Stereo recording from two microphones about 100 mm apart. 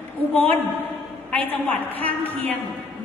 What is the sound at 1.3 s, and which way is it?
A woman's voice, 15° left (ahead or behind).